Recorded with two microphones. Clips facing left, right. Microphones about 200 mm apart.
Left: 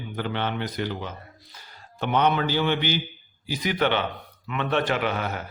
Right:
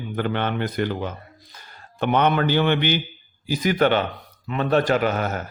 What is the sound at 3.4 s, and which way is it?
Speech, 45° right (ahead or behind).